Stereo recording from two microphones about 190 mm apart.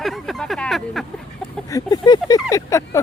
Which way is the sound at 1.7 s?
20° left (ahead or behind).